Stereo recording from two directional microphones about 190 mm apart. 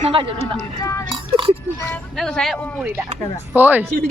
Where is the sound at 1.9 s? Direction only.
5° left (ahead or behind).